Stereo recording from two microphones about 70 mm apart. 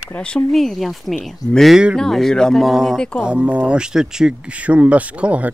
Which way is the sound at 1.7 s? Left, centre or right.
Centre.